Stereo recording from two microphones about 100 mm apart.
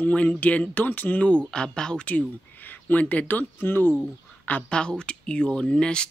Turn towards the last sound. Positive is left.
turn(degrees=10)  # may be behind; listen again after turning